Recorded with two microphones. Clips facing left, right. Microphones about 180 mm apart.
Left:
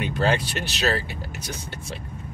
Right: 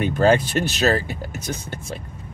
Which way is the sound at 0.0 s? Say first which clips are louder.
Right 6 dB; 45° right (ahead or behind).